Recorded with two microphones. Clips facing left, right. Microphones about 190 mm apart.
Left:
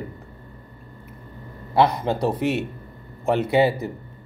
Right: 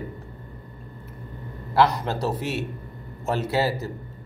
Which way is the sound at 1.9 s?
55° left (ahead or behind).